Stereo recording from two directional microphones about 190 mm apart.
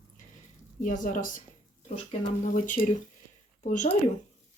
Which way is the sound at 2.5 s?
40° left (ahead or behind).